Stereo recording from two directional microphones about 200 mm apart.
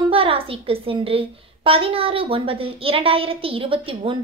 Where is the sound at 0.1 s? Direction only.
25° right (ahead or behind).